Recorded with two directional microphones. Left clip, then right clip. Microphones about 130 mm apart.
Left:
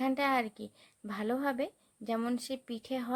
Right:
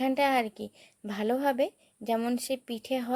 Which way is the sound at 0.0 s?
25° right (ahead or behind).